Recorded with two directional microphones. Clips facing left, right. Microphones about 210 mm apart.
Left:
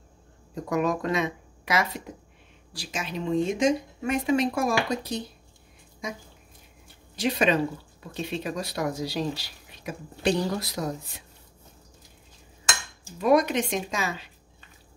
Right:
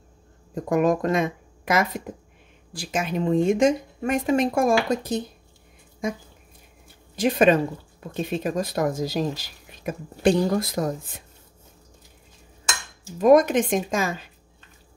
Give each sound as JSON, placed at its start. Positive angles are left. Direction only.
{"t": 0.7, "sound": "speech", "side_deg": -50}
{"t": 7.2, "sound": "speech", "side_deg": -50}
{"t": 13.2, "sound": "speech", "side_deg": -45}